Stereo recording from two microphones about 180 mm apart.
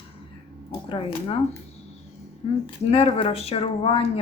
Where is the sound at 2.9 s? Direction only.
35° left (ahead or behind).